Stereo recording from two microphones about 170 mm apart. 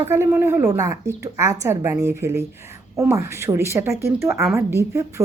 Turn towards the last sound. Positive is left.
turn(degrees=-15)  # may be behind; listen again after turning